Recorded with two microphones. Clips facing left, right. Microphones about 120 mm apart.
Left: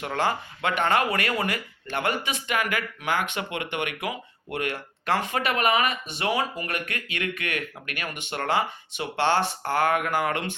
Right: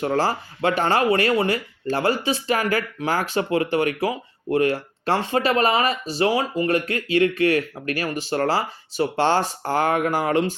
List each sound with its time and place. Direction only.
0.0 s speech: 35° right (ahead or behind)